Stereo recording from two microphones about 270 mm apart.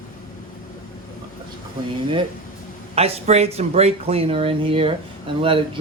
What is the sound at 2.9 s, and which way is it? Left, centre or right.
Speech, right.